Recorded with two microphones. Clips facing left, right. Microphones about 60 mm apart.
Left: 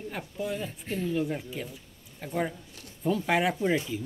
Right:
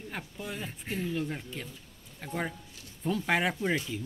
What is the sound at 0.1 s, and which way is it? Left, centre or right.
Speech, centre.